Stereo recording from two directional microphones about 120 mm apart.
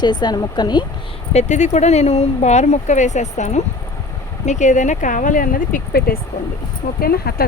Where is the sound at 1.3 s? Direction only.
70° left (ahead or behind).